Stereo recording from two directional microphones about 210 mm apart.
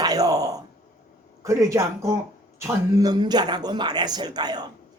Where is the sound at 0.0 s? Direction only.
20° right (ahead or behind).